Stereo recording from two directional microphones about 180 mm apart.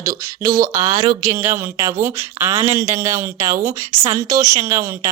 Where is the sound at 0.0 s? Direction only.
20° right (ahead or behind).